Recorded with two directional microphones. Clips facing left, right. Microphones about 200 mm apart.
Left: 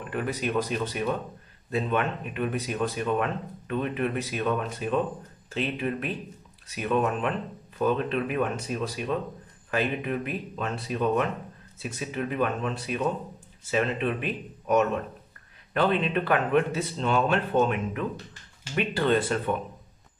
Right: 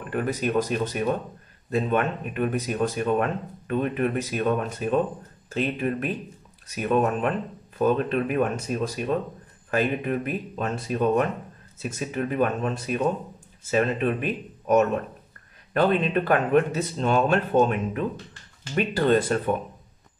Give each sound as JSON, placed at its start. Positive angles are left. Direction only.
{"t": 0.1, "sound": "speech", "side_deg": -45}